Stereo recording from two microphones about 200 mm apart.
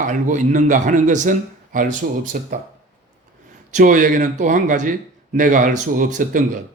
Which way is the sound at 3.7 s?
40° right (ahead or behind).